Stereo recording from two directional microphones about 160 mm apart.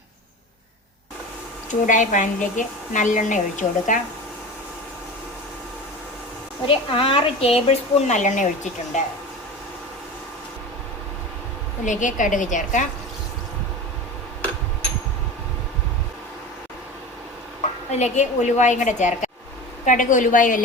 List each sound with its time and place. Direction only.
1.9 s a woman's voice: 55° left (ahead or behind)
6.7 s a woman's voice: 35° left (ahead or behind)
11.9 s a woman's voice: 50° left (ahead or behind)
17.9 s a woman's voice: 45° left (ahead or behind)